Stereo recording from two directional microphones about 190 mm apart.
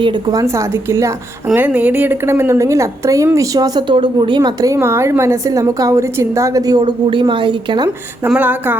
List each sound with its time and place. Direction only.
0.0 s a woman's voice: 20° right (ahead or behind)
8.2 s a woman's voice: 10° right (ahead or behind)